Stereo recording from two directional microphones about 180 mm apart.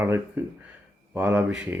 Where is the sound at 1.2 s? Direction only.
10° right (ahead or behind).